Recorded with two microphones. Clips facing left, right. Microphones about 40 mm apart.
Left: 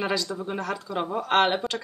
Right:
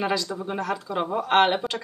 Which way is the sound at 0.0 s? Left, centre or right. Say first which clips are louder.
Right 1 dB; centre.